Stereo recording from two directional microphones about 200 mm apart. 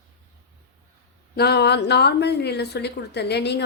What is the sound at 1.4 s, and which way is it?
A woman's voice, 55° left (ahead or behind).